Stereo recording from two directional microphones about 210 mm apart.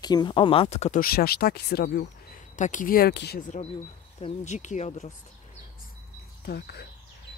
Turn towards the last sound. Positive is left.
turn(degrees=50)  # may be behind; listen again after turning